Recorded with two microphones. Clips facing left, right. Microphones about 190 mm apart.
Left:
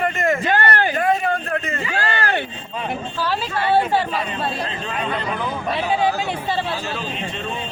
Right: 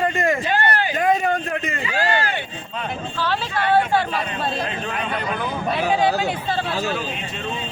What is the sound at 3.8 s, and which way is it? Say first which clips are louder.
A man's voice: even; 5° left (ahead or behind).